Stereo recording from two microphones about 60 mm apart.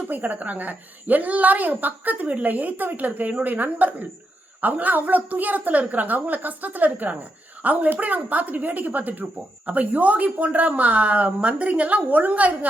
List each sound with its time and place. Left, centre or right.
0.1 s a woman's voice: right